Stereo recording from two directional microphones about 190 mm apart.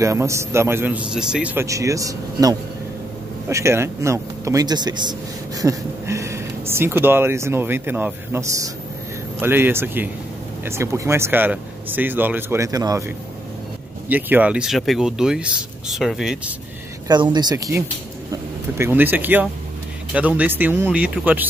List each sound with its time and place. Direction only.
0.0 s speech: 15° right (ahead or behind)
14.0 s speech: 10° right (ahead or behind)
17.1 s speech: 20° right (ahead or behind)